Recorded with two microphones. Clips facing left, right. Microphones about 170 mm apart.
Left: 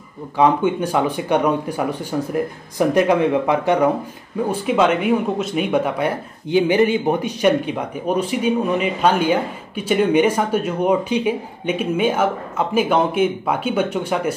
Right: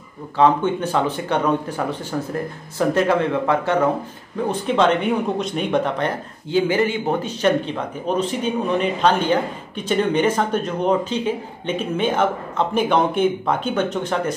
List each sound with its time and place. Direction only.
0.4 s speech: 15° left (ahead or behind)